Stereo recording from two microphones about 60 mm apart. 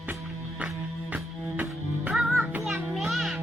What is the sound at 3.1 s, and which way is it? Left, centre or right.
Music, centre.